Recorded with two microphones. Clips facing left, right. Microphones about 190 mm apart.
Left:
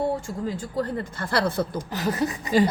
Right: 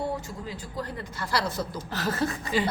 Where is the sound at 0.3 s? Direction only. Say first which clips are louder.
Left 8 dB; 50° left (ahead or behind).